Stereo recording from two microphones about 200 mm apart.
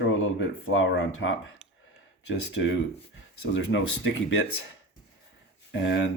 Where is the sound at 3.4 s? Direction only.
65° left (ahead or behind).